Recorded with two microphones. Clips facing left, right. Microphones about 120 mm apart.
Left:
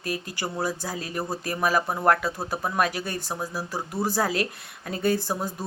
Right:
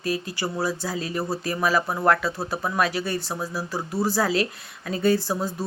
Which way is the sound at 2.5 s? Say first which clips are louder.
Right 1 dB; 20° left (ahead or behind).